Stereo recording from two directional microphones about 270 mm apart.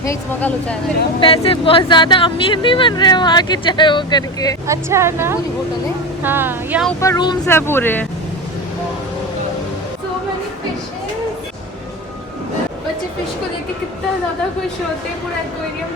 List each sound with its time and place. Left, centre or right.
0.0 s speech: centre
1.2 s speech: centre
4.6 s a woman's voice: centre
7.0 s speech: centre